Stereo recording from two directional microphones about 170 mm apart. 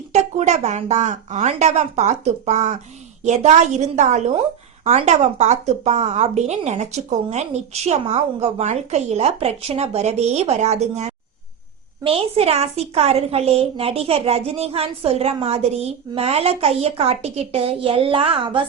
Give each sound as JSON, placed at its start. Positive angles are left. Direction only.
{"t": 0.1, "sound": "a woman's voice", "side_deg": -40}